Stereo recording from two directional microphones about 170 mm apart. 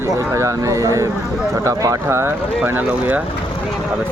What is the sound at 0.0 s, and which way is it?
Speech, 15° right (ahead or behind).